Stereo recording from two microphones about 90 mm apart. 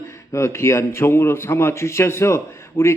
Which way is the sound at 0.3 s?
30° left (ahead or behind).